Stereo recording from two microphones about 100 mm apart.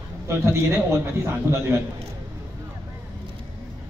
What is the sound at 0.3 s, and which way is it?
A man's voice, 25° right (ahead or behind).